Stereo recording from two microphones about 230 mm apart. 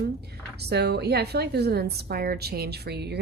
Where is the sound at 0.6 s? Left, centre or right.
Right.